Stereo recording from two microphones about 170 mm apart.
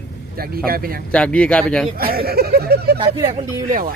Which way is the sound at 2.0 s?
60° right (ahead or behind).